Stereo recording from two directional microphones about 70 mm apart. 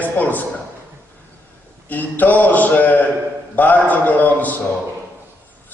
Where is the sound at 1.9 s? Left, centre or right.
Left.